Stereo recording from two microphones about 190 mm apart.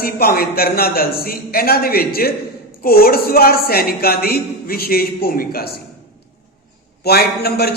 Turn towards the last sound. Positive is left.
turn(degrees=55)  # may be behind; listen again after turning